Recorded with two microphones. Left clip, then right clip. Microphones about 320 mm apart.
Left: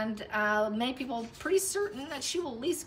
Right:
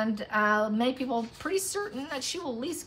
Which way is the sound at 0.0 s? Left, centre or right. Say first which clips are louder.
Right 4 dB; centre.